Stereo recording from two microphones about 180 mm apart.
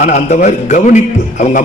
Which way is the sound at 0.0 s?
45° left (ahead or behind).